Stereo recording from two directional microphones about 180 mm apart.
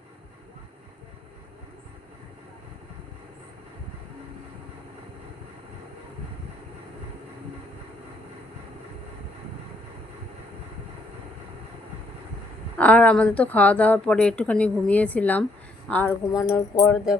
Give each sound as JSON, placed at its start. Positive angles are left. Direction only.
{"t": 12.7, "sound": "a woman's voice", "side_deg": 5}
{"t": 16.3, "sound": "music", "side_deg": 20}